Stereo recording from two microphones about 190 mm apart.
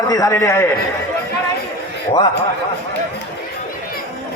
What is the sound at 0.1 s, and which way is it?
Speech, 15° left (ahead or behind).